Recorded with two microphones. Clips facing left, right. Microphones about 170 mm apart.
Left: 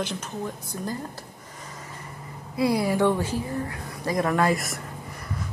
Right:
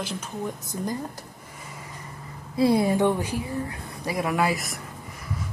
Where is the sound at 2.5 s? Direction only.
25° right (ahead or behind).